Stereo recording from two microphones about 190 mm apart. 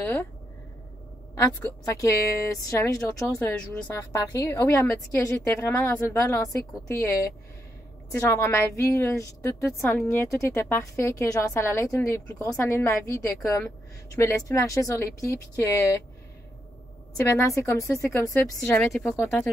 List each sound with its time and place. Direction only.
0.0 s a woman's voice: 10° left (ahead or behind)
1.3 s a woman's voice: 15° left (ahead or behind)
17.2 s a woman's voice: 15° left (ahead or behind)